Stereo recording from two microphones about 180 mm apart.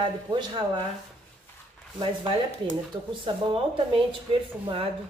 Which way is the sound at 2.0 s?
30° right (ahead or behind).